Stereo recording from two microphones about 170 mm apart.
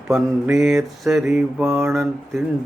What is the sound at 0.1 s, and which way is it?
Mantra, centre (ahead or behind).